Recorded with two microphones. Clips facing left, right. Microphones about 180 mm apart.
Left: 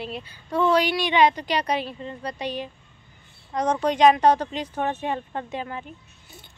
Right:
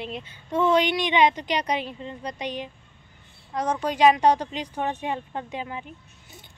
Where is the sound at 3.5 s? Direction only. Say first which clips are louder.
Left 3 dB; 5° right (ahead or behind).